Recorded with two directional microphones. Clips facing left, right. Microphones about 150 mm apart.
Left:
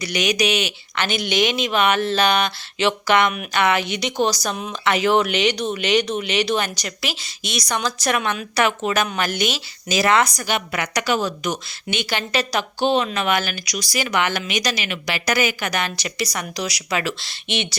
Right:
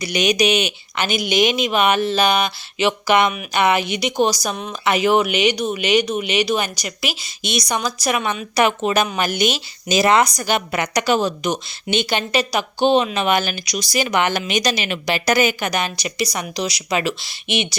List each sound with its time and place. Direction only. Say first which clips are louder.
0.0 s speech: right 3 dB; 20° right (ahead or behind)
10.4 s a woman's voice: right 3 dB; 35° right (ahead or behind)
10.8 s a woman's voice: right 4 dB; 20° right (ahead or behind)